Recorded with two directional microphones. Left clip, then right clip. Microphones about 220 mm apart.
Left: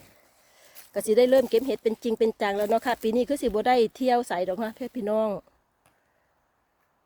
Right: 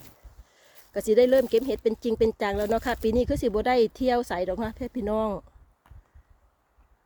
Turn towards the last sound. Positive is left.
turn(degrees=0)  # may be behind; listen again after turning